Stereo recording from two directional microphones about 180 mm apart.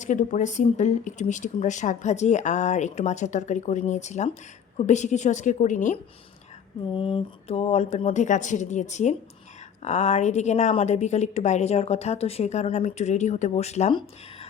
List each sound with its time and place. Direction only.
0.0 s speech: 45° left (ahead or behind)
6.9 s speech: 30° left (ahead or behind)